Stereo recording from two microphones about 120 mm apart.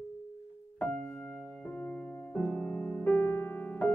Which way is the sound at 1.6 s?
15° left (ahead or behind).